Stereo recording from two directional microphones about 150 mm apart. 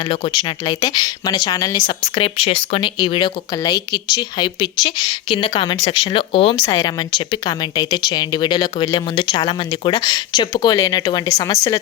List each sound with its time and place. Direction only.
0.7 s speech: 25° left (ahead or behind)
2.2 s speech: 40° left (ahead or behind)
6.7 s speech: 25° left (ahead or behind)